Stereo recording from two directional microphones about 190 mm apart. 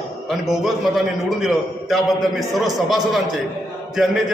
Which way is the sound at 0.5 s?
Centre (ahead or behind).